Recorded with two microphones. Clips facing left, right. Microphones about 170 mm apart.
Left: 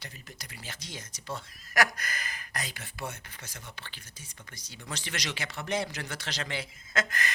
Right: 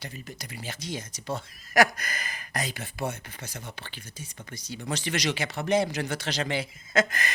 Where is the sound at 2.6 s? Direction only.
20° right (ahead or behind).